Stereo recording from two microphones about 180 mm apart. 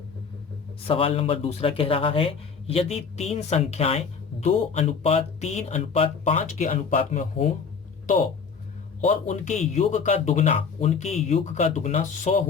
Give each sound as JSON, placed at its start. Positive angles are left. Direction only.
{"t": 0.9, "sound": "speech", "side_deg": 30}
{"t": 9.0, "sound": "speech", "side_deg": 35}